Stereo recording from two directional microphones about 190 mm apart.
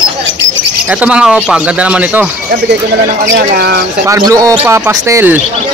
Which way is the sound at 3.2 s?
55° right (ahead or behind).